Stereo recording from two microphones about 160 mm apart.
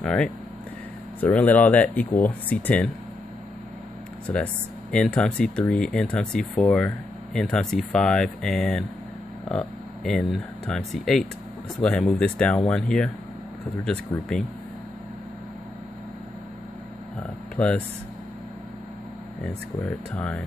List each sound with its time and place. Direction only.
0.0 s speech: 5° left (ahead or behind)
4.3 s speech: 10° left (ahead or behind)
14.1 s speech: 15° left (ahead or behind)
17.6 s speech: 5° left (ahead or behind)
19.4 s speech: 10° left (ahead or behind)